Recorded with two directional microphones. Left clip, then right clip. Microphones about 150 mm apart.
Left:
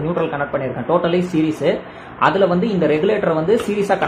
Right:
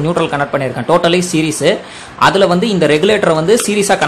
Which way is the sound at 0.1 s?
50° right (ahead or behind).